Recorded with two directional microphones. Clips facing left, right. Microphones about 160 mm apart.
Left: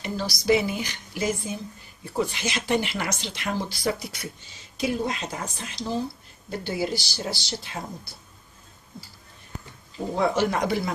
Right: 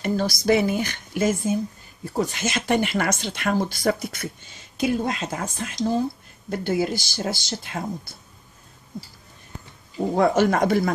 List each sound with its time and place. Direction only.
0.0 s speech: 55° right (ahead or behind)
10.1 s speech: 50° right (ahead or behind)